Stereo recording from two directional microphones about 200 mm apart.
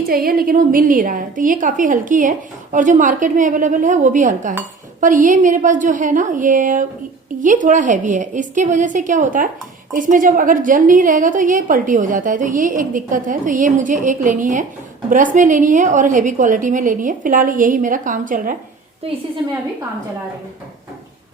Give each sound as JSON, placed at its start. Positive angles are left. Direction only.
{"t": 0.1, "sound": "a woman's voice", "side_deg": -45}